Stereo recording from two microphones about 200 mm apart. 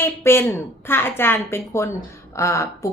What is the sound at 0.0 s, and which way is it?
A woman's voice, 10° left (ahead or behind).